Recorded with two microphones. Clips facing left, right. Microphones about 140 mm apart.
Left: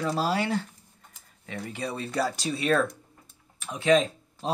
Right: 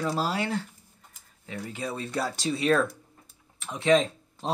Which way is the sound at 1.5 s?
30° left (ahead or behind).